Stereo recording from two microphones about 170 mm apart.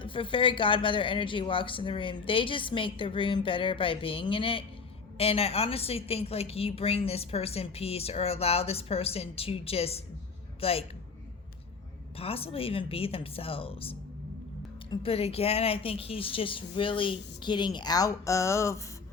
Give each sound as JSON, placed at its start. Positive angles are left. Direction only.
{"t": 0.0, "sound": "a woman's voice", "side_deg": 30}
{"t": 12.1, "sound": "a woman's voice", "side_deg": 35}